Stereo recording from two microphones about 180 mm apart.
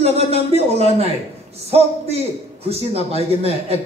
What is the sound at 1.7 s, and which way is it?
Speech, 35° right (ahead or behind).